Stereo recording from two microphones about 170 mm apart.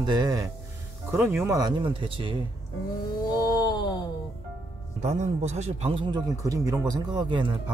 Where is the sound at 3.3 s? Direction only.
25° left (ahead or behind).